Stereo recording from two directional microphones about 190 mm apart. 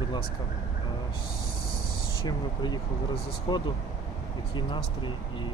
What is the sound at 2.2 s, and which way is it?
Speech, 20° left (ahead or behind).